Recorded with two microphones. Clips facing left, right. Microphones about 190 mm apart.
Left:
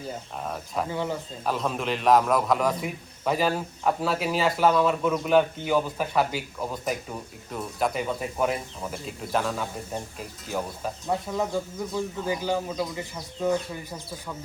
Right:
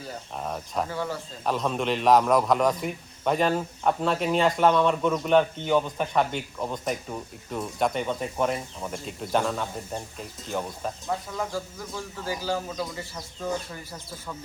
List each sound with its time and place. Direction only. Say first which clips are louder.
0.3 s a man's voice: right 2 dB; centre (ahead or behind)
0.9 s speech: left 2 dB; 20° left (ahead or behind)
1.5 s a man's voice: right 2 dB; centre (ahead or behind)
11.1 s speech: left 4 dB; 20° left (ahead or behind)